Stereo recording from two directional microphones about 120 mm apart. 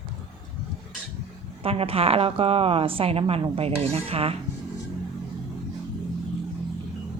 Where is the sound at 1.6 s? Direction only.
55° right (ahead or behind).